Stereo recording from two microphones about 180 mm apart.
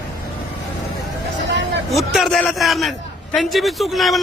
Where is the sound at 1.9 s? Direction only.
Centre (ahead or behind).